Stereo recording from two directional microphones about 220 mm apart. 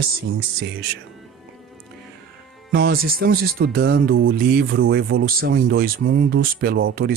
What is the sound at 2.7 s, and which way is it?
Speech, 40° right (ahead or behind).